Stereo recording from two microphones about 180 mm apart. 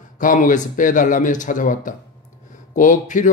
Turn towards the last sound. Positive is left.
turn(degrees=45)  # may be behind; listen again after turning